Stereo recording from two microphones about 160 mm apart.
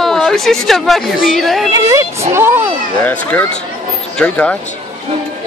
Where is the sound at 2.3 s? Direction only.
15° right (ahead or behind).